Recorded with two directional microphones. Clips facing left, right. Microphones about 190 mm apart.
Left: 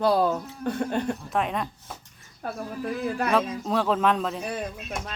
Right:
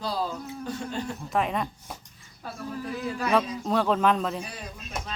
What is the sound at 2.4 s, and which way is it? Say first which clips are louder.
Speech: left 6 dB; 55° left (ahead or behind).